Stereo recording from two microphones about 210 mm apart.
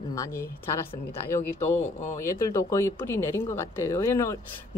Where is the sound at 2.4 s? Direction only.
15° left (ahead or behind).